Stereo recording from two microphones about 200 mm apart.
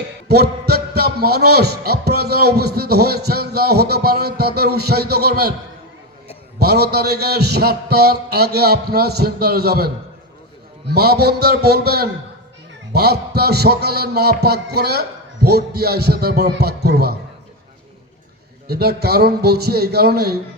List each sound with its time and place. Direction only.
0.3 s a man's voice: 55° right (ahead or behind)
6.6 s a man's voice: 55° right (ahead or behind)
18.7 s a man's voice: 55° right (ahead or behind)